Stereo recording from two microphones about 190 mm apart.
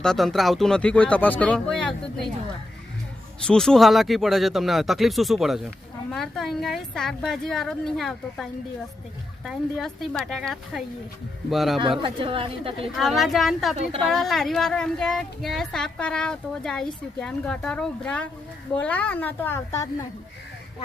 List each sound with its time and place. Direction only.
0.0 s speech: 5° left (ahead or behind)
3.4 s speech: 5° left (ahead or behind)
12.0 s a woman's voice: 25° right (ahead or behind)
13.0 s a woman's voice: centre (ahead or behind); by 20.1 s 15° left (ahead or behind)